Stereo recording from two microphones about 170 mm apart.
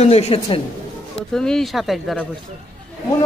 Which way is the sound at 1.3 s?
5° left (ahead or behind).